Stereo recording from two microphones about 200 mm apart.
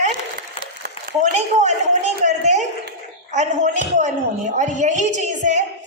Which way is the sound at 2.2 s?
35° right (ahead or behind).